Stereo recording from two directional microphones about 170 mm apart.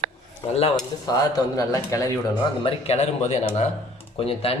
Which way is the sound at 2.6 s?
35° left (ahead or behind).